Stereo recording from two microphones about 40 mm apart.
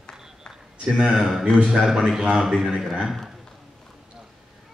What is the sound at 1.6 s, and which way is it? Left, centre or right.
A man's voice, right.